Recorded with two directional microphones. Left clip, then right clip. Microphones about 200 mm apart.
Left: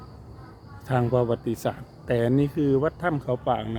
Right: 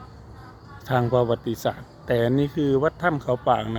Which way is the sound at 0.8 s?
Centre (ahead or behind).